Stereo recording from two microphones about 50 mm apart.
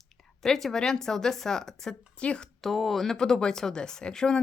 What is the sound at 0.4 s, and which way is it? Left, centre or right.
Speech, centre.